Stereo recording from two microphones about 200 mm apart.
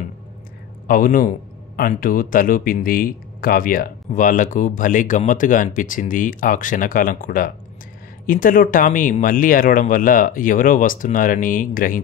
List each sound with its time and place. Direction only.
0.8 s speech: 45° left (ahead or behind)